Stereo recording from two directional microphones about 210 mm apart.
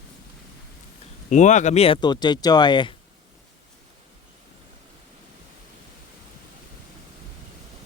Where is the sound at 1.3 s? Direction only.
35° left (ahead or behind).